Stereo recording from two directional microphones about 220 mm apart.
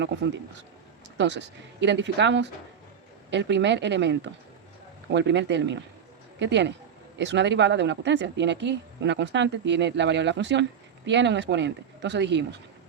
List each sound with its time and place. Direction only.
0.0 s a woman's voice: 50° right (ahead or behind)